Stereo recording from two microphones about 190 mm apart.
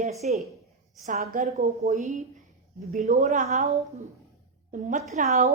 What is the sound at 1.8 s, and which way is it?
A woman's voice, 35° right (ahead or behind).